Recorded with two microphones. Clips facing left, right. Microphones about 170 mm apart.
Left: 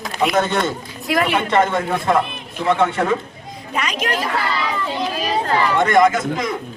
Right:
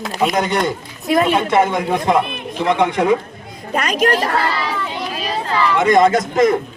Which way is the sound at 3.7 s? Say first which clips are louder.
Right 6 dB; 45° right (ahead or behind).